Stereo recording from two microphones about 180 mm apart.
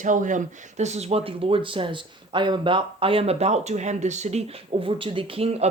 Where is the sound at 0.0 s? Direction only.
45° right (ahead or behind).